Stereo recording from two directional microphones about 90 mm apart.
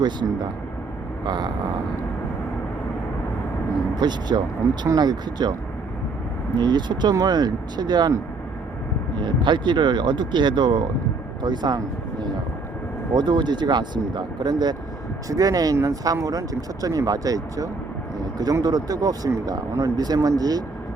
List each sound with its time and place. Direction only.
0.0 s speech: 55° right (ahead or behind)
3.9 s speech: 50° right (ahead or behind)
6.6 s speech: 55° right (ahead or behind)
9.2 s speech: 60° right (ahead or behind)
13.1 s speech: 55° right (ahead or behind)
15.3 s speech: 40° right (ahead or behind)